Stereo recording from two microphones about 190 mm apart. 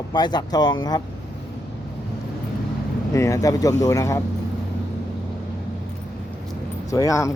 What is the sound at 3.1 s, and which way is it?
A man's voice, 15° left (ahead or behind).